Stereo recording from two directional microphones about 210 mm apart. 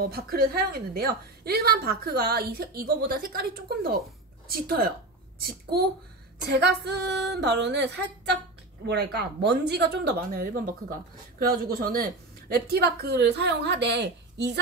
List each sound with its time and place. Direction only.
0.1 s a woman's voice: 45° right (ahead or behind)